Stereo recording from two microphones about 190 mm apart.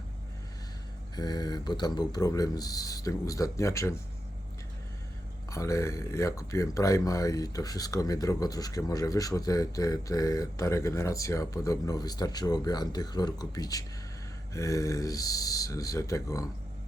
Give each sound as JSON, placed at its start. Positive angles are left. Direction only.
{"t": 1.1, "sound": "speech", "side_deg": 20}
{"t": 5.5, "sound": "speech", "side_deg": 15}